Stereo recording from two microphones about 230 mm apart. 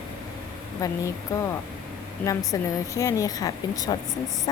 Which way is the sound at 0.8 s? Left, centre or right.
Centre.